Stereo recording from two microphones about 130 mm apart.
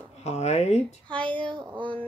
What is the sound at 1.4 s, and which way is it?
Speech, 35° right (ahead or behind).